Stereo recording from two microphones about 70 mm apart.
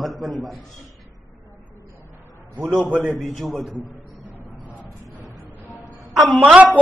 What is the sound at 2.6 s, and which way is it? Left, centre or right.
Speech, right.